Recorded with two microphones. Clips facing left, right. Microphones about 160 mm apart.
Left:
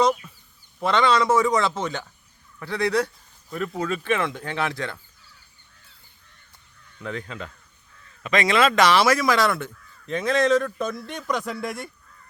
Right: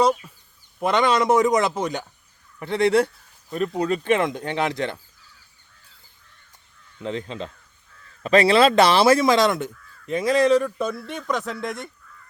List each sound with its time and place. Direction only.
0.2 s a sound: 15° right (ahead or behind)
0.8 s a man's voice: 15° right (ahead or behind)
2.6 s speech: 25° right (ahead or behind)
7.0 s speech: 25° right (ahead or behind); by 11.9 s 5° left (ahead or behind)